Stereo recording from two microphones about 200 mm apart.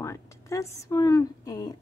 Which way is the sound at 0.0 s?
15° left (ahead or behind).